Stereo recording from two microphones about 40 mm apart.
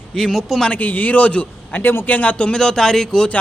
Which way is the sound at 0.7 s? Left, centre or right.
Left.